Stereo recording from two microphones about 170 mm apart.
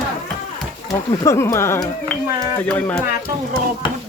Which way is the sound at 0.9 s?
15° left (ahead or behind).